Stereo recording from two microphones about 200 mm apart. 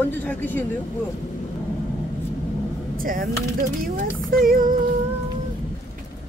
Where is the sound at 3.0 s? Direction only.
45° right (ahead or behind).